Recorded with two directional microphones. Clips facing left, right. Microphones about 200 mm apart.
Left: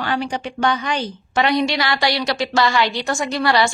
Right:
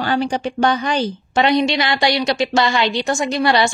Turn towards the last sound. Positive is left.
turn(degrees=-20)  # may be behind; listen again after turning